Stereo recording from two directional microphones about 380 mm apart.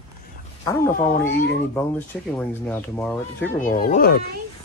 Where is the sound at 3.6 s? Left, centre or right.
Left.